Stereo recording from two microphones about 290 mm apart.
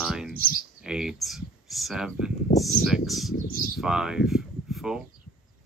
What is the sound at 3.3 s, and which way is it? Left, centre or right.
Speech, left.